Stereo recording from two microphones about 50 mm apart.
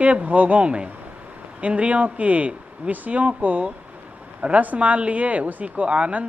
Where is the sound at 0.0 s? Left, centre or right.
Right.